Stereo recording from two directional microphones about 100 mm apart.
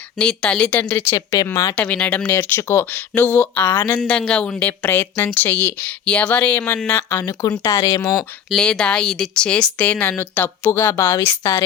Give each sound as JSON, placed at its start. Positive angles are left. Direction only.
{"t": 0.2, "sound": "speech", "side_deg": 10}
{"t": 1.1, "sound": "speech", "side_deg": 35}
{"t": 1.7, "sound": "speech", "side_deg": 10}
{"t": 8.4, "sound": "speech", "side_deg": 5}